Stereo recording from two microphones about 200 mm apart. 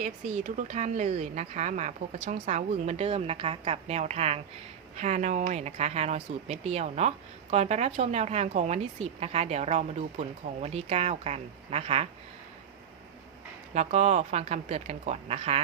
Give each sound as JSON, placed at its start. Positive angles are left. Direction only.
{"t": 0.0, "sound": "speech", "side_deg": -35}
{"t": 13.7, "sound": "speech", "side_deg": -35}